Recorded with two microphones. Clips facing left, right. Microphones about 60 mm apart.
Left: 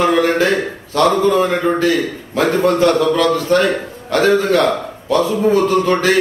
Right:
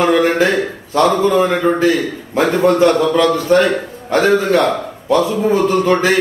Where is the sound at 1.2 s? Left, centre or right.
Right.